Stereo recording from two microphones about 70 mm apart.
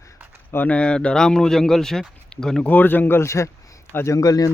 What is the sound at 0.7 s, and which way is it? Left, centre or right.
Speech, centre.